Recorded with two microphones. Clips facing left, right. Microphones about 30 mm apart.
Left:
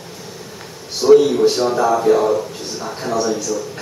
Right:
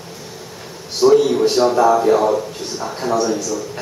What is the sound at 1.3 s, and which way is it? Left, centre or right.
A man's voice, centre.